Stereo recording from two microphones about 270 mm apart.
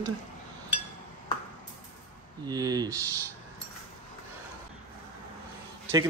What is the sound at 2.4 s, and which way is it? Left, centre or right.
Speech, centre.